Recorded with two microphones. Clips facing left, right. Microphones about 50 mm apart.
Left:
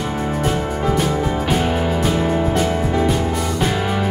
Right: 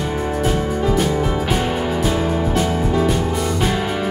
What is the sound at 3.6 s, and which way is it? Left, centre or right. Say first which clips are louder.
Music: even; centre.